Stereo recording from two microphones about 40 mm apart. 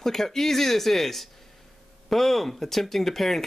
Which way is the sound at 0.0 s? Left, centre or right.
Centre.